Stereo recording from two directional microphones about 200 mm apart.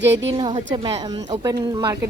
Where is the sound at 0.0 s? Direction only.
65° right (ahead or behind).